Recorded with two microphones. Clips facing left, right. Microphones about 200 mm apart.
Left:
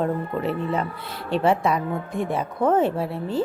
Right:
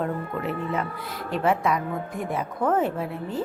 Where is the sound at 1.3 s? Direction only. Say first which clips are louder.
Left 3 dB; 30° left (ahead or behind).